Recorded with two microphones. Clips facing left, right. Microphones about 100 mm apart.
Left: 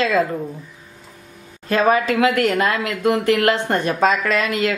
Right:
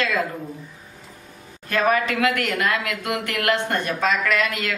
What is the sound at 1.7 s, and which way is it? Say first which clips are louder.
Speech: left 4 dB; 25° left (ahead or behind).